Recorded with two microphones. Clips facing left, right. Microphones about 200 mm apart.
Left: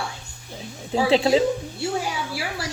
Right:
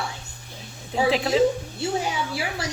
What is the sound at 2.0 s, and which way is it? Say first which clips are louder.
Speech: right 1 dB; 20° right (ahead or behind).